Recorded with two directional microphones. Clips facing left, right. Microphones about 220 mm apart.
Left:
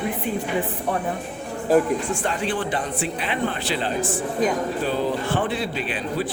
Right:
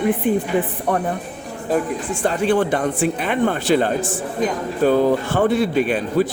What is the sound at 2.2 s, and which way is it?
Speech, 40° right (ahead or behind).